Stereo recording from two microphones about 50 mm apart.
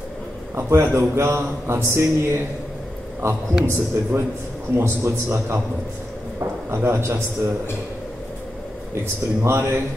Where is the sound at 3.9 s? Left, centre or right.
Right.